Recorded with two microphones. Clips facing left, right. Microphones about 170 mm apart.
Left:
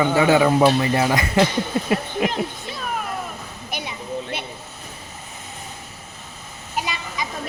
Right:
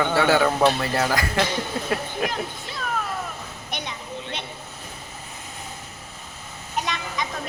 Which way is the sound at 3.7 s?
10° left (ahead or behind).